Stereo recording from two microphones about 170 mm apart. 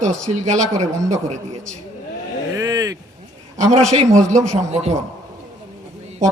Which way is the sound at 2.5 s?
20° right (ahead or behind).